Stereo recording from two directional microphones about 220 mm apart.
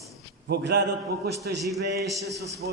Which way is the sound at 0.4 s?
50° right (ahead or behind).